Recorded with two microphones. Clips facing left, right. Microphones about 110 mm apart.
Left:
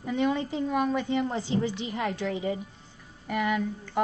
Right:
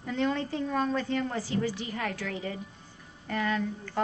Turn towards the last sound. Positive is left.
turn(degrees=15)  # may be behind; listen again after turning